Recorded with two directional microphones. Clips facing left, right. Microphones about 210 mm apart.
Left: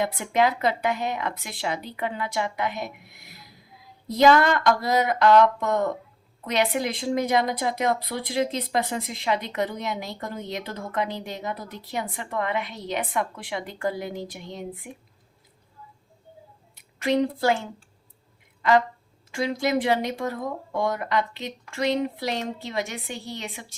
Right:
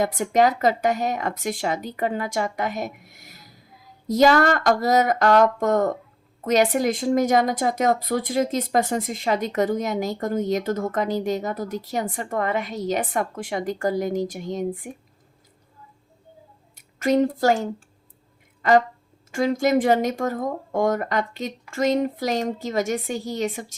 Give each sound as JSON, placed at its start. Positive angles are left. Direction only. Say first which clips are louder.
{"t": 0.0, "sound": "speech", "louder": "right 4 dB", "side_deg": -45}
{"t": 16.7, "sound": "a woman's voice", "louder": "right 3 dB", "side_deg": -45}